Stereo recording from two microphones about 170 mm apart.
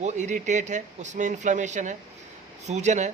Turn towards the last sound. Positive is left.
turn(degrees=-45)  # may be behind; listen again after turning